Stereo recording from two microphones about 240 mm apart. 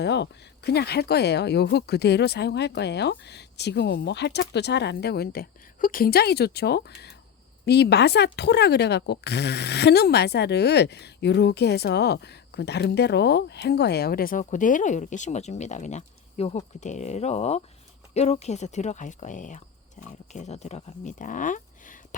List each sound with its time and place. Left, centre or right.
0.0 s speech: left
20.0 s pig: left
20.3 s speech: left